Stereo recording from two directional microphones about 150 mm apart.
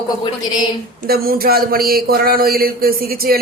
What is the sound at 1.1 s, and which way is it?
A man's voice, 85° right.